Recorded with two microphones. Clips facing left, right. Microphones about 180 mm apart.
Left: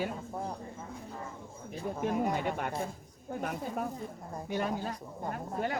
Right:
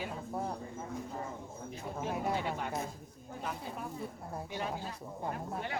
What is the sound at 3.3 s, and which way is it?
Speech, 55° left (ahead or behind).